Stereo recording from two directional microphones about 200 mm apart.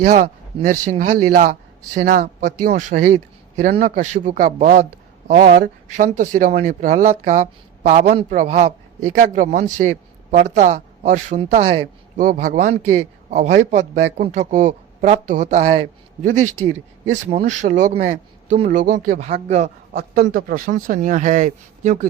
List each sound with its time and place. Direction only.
0.1 s a man's voice: 35° right (ahead or behind)
11.5 s speech: 25° right (ahead or behind)
12.1 s a man's voice: 45° right (ahead or behind)
17.2 s a man's voice: 40° right (ahead or behind)